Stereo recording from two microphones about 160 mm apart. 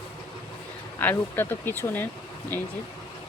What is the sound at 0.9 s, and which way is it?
Speech, 10° left (ahead or behind).